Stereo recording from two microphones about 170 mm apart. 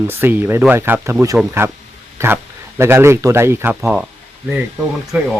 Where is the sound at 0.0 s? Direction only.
10° right (ahead or behind).